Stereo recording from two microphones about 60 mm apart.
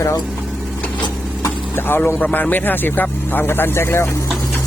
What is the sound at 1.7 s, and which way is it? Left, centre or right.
Speech, left.